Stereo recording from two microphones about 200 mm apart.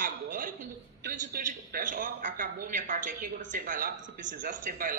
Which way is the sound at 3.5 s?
40° right (ahead or behind).